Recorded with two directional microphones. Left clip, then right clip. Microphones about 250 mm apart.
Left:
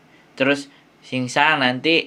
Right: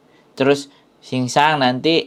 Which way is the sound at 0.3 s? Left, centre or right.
Right.